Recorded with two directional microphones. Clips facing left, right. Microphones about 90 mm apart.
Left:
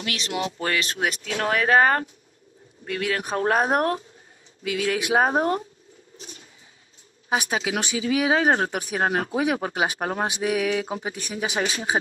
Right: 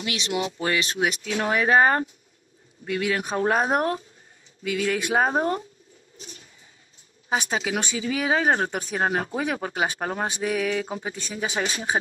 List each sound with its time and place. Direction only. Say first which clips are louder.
0.3 s speech: right 1 dB; 15° right (ahead or behind)
2.8 s speech: right 1 dB; 5° right (ahead or behind)
7.2 s speech: left 1 dB; 10° left (ahead or behind)